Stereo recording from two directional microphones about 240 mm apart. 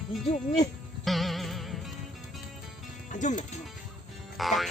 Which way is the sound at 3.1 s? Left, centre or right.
Left.